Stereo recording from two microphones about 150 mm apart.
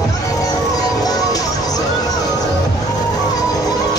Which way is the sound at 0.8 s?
25° left (ahead or behind).